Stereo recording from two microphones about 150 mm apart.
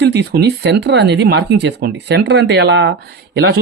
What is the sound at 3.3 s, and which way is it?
Speech, 90° right.